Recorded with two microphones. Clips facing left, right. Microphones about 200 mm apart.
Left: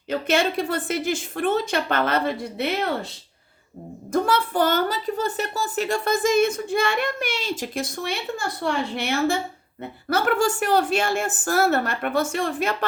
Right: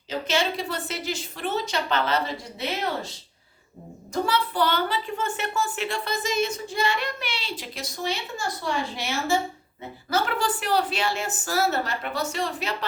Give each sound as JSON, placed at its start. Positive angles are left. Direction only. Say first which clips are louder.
{"t": 0.1, "sound": "a woman's voice", "louder": "left 4 dB", "side_deg": 55}
{"t": 4.1, "sound": "a woman's voice", "louder": "left 4 dB", "side_deg": 50}